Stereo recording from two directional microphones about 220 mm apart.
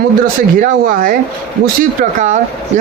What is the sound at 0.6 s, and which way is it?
Speech, 40° right (ahead or behind).